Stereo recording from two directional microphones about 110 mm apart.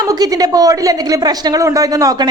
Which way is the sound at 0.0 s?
35° right (ahead or behind).